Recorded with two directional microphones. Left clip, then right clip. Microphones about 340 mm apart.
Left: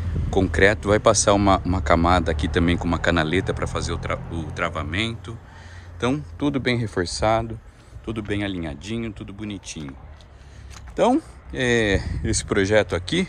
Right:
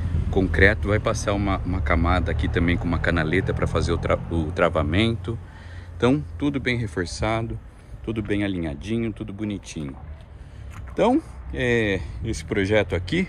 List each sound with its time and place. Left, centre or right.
0.3 s speech: centre
11.0 s speech: centre